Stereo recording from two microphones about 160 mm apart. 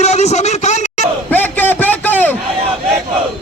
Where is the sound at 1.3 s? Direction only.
10° left (ahead or behind).